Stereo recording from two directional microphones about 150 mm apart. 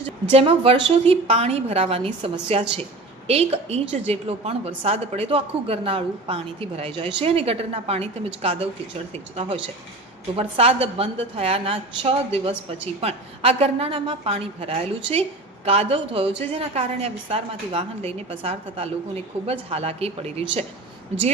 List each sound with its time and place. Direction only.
0.0 s a woman's voice: 40° right (ahead or behind)